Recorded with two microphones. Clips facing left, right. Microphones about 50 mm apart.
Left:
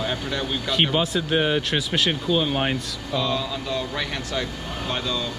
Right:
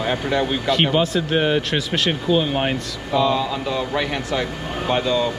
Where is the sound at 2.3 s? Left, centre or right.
Centre.